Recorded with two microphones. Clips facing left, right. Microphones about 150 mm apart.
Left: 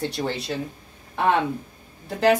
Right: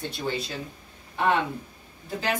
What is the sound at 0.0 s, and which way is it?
Speech, 70° left (ahead or behind).